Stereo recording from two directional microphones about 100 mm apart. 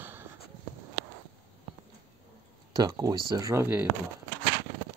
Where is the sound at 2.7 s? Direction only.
45° right (ahead or behind).